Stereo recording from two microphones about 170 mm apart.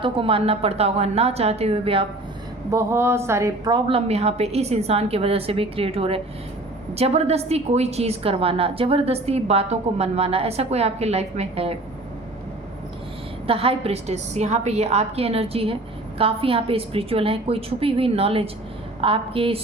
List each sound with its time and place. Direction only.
0.0 s a woman's voice: 30° right (ahead or behind)
2.6 s a woman's voice: 15° right (ahead or behind); by 11.7 s 35° right (ahead or behind)
13.5 s a woman's voice: 35° right (ahead or behind)